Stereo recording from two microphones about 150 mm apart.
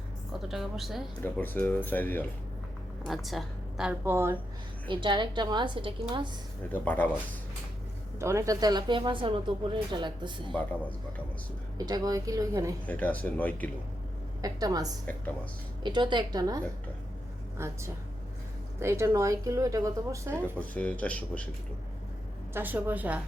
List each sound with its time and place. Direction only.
0.4 s a woman's voice: centre (ahead or behind)
1.2 s speech: 10° left (ahead or behind)
3.1 s a woman's voice: centre (ahead or behind)
4.9 s speech: 30° right (ahead or behind)
6.7 s speech: 10° left (ahead or behind)
8.2 s speech: 20° right (ahead or behind)
10.5 s speech: 10° left (ahead or behind)
11.9 s speech: 25° right (ahead or behind)
12.8 s speech: 10° left (ahead or behind)
14.4 s speech: 25° right (ahead or behind)
17.6 s a woman's voice: 15° right (ahead or behind)
18.8 s speech: 15° right (ahead or behind)
20.6 s speech: 10° left (ahead or behind)
22.5 s a woman's voice: 10° right (ahead or behind)